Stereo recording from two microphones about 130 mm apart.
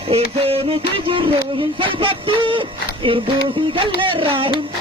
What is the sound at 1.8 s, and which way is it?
Speech, 45° right (ahead or behind).